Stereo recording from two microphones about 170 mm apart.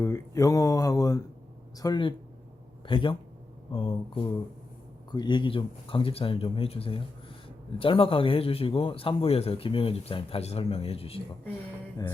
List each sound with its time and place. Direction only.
0.0 s a man's voice: 20° left (ahead or behind); by 11.2 s 35° left (ahead or behind)